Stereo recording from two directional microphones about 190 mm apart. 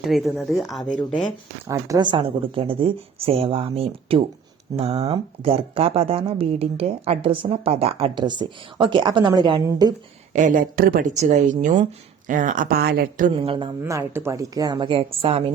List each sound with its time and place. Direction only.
0.0 s speech: centre (ahead or behind)
1.6 s speech: 15° right (ahead or behind)
10.3 s a woman's voice: 45° right (ahead or behind)
13.3 s speech: 30° right (ahead or behind)
13.8 s speech: 15° right (ahead or behind); by 15.5 s 30° right (ahead or behind)